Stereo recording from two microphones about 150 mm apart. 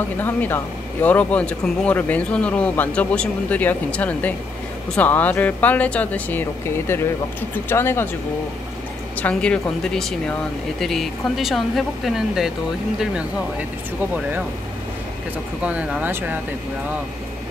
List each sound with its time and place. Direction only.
0.2 s speech: 15° left (ahead or behind)
9.2 s speech: 5° left (ahead or behind)
15.6 s speech: 10° right (ahead or behind)